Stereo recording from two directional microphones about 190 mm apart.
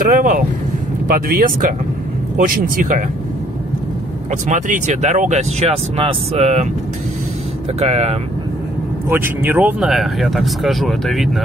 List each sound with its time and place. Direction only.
0.0 s vehicle: 45° right (ahead or behind)
1.0 s speech: 50° right (ahead or behind)
4.3 s speech: 40° right (ahead or behind)
7.8 s speech: 35° right (ahead or behind)
9.1 s speech: 10° right (ahead or behind)